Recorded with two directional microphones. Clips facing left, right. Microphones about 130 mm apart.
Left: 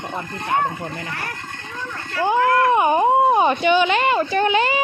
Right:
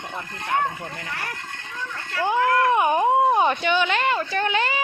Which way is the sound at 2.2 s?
Centre (ahead or behind).